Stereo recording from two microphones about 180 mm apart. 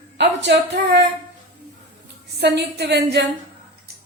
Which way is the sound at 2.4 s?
65° right (ahead or behind).